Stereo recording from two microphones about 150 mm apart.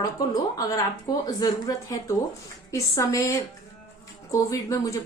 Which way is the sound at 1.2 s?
25° left (ahead or behind).